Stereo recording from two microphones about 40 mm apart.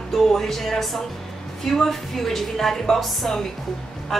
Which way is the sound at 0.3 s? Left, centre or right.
Centre.